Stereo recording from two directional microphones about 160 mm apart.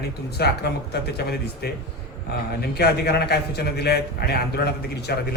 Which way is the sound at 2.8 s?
90° left.